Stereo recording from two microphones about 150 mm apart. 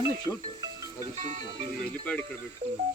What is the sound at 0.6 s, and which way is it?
Music, 30° right (ahead or behind).